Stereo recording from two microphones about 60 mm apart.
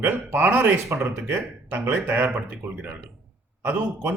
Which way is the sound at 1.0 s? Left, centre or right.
Right.